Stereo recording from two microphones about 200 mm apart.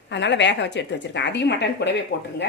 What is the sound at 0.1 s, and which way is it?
A woman's voice, 60° left (ahead or behind).